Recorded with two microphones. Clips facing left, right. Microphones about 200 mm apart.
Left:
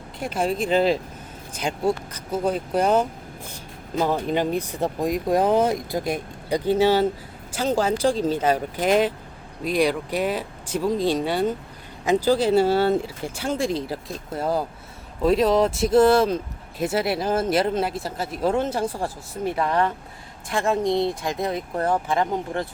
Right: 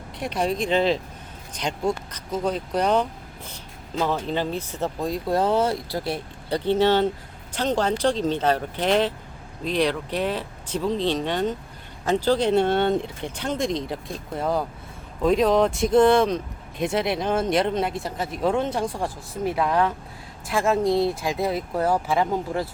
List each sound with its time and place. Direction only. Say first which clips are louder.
0.2 s speech: left 1 dB; 5° left (ahead or behind)